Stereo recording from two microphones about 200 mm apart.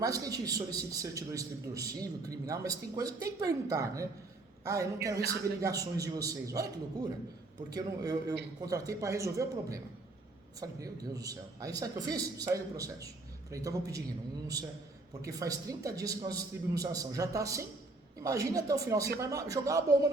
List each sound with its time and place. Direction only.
0.0 s a man's voice: 20° right (ahead or behind)
7.7 s a man's voice: 20° right (ahead or behind)
15.2 s a man's voice: 15° right (ahead or behind)